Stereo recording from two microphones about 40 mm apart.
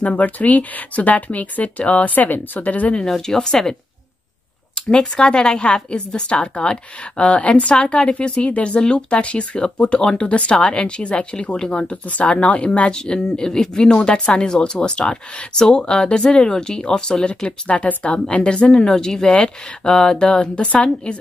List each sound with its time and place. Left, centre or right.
0.0 s speech: left
3.0 s speech: centre
4.9 s speech: left